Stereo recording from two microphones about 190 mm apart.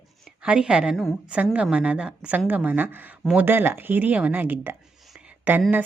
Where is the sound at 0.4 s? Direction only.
5° right (ahead or behind).